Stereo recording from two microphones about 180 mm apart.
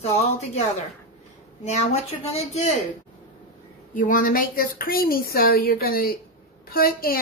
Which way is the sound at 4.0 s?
50° left (ahead or behind).